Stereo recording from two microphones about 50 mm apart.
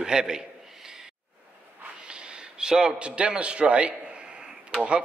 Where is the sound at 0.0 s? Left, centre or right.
Centre.